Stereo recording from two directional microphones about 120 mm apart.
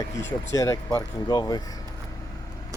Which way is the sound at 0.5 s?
25° left (ahead or behind).